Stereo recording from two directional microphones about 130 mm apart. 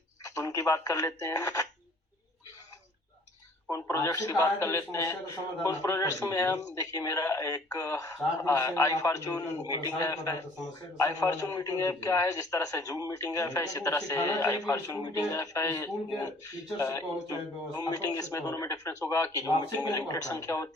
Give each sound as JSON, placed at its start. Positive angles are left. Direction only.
{"t": 0.3, "sound": "a man's voice", "side_deg": 25}
{"t": 3.7, "sound": "a man's voice", "side_deg": 25}